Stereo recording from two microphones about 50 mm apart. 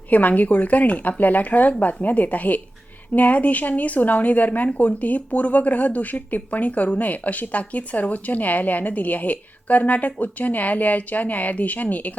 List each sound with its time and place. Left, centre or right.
0.1 s speech: left